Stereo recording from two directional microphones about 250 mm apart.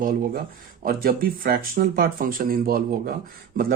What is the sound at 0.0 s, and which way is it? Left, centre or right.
A woman's voice, right.